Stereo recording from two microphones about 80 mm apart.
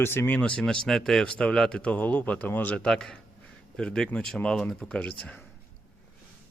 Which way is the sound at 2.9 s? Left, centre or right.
Centre.